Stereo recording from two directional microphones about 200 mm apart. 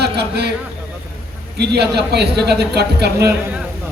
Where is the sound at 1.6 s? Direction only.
55° right (ahead or behind).